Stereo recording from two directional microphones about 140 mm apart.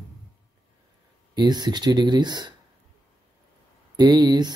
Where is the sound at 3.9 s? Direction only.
30° right (ahead or behind).